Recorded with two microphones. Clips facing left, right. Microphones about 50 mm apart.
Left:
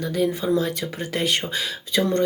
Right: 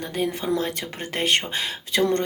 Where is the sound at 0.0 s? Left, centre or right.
Right.